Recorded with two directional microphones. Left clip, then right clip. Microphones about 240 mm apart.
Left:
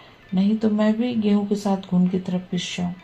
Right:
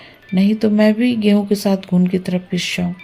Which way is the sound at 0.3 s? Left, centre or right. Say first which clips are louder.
Right 6 dB; right.